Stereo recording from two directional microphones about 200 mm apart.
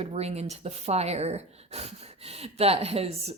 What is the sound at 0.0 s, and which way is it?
Speech, 30° right (ahead or behind).